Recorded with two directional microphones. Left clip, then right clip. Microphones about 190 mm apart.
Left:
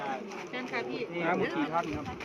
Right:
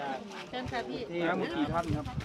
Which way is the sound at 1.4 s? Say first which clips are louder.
Left 1 dB; 60° right (ahead or behind).